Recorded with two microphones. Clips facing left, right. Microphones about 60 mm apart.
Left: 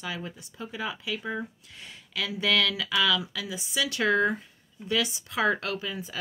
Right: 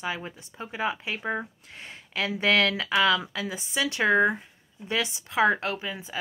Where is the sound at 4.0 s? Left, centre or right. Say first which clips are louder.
Right 3 dB; right.